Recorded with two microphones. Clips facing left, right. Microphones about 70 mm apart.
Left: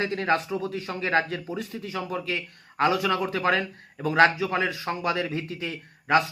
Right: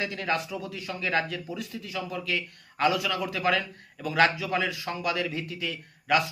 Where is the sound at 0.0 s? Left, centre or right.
Left.